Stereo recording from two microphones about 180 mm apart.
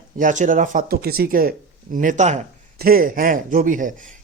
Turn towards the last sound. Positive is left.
turn(degrees=-50)  # may be behind; listen again after turning